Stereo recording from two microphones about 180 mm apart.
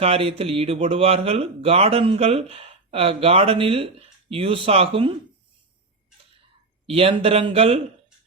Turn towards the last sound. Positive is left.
turn(degrees=-35)  # may be behind; listen again after turning